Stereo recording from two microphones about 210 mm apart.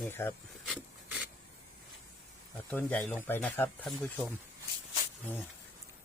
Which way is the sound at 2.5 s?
10° left (ahead or behind).